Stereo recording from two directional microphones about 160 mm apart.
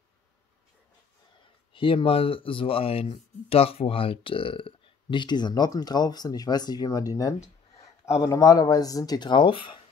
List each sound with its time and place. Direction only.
1.7 s speech: 35° left (ahead or behind)